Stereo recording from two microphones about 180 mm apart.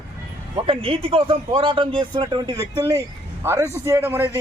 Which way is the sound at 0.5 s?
30° right (ahead or behind).